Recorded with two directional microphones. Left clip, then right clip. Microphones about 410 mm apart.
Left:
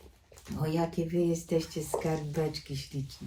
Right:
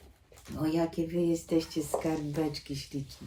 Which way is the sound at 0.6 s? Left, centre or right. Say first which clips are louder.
Right 2 dB; centre.